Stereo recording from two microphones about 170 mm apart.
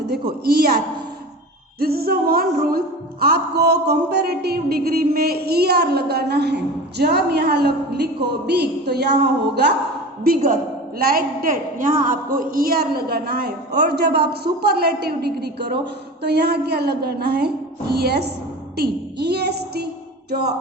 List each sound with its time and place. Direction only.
0.0 s a woman's voice: 70° right (ahead or behind)
1.8 s a woman's voice: 65° right (ahead or behind)
10.2 s a woman's voice: 55° right (ahead or behind); by 19.9 s 70° right (ahead or behind)